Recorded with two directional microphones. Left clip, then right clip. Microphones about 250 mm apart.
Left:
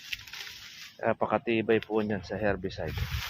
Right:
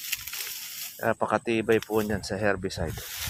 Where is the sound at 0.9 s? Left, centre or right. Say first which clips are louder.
Right 2 dB; centre.